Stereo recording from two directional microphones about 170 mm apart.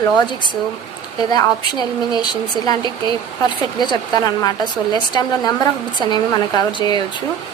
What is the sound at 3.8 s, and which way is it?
Speech, 25° left (ahead or behind).